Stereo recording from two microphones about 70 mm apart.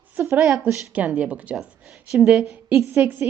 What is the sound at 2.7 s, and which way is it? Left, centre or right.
Speech, right.